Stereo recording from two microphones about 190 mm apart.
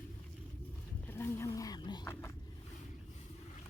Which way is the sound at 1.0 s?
10° left (ahead or behind).